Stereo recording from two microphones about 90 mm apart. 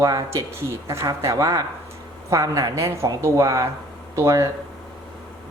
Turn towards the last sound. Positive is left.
turn(degrees=-35)  # may be behind; listen again after turning